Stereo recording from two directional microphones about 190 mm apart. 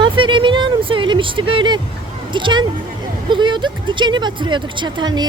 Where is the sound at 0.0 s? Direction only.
25° right (ahead or behind).